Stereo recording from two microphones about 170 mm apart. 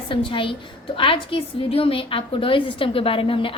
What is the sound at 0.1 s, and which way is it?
A woman's voice, 30° left (ahead or behind).